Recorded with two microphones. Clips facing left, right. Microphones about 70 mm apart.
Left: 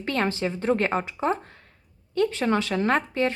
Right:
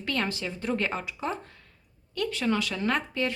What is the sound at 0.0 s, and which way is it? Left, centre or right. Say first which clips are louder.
A woman's voice: left 5 dB; left.